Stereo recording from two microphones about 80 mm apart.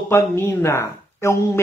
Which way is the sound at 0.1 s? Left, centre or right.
Left.